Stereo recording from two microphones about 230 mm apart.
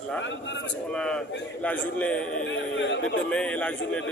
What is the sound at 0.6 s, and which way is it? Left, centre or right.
A man's voice, centre.